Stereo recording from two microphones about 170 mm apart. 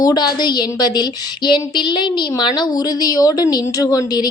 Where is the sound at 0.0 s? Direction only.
25° left (ahead or behind).